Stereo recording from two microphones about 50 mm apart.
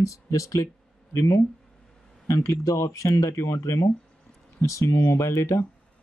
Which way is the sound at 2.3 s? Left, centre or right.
Left.